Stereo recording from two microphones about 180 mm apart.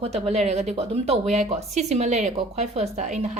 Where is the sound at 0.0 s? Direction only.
35° right (ahead or behind).